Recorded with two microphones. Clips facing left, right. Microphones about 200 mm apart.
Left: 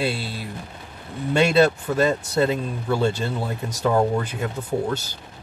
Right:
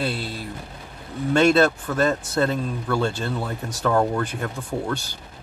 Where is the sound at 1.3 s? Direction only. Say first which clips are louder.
Even; 10° left (ahead or behind).